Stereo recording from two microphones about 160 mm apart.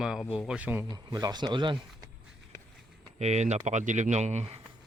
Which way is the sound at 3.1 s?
45° right (ahead or behind).